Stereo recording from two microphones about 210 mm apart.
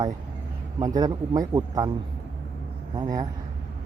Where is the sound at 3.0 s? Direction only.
15° right (ahead or behind).